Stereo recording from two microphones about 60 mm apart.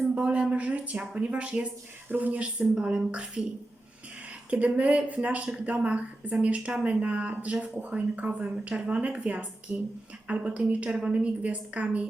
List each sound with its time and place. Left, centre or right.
0.1 s a sound: centre
0.5 s a woman's voice: right
4.5 s a woman's voice: right